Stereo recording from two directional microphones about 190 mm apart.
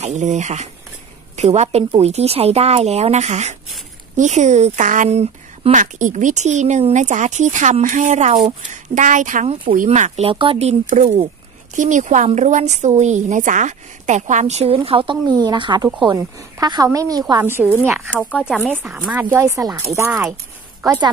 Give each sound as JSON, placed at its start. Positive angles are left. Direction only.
{"t": 0.0, "sound": "a woman's voice", "side_deg": -40}
{"t": 18.1, "sound": "speech", "side_deg": 10}
{"t": 19.3, "sound": "a woman's voice", "side_deg": -15}